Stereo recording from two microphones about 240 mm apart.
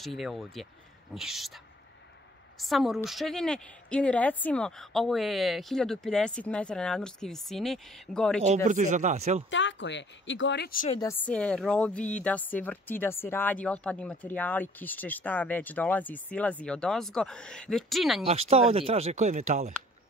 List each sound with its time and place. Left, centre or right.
0.0 s a woman's voice: centre
2.6 s a woman's voice: centre
8.6 s speech: right
9.5 s speech: left
11.0 s a woman's voice: centre
18.2 s speech: right